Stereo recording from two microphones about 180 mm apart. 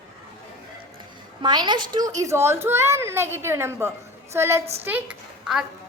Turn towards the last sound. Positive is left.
turn(degrees=-5)  # may be behind; listen again after turning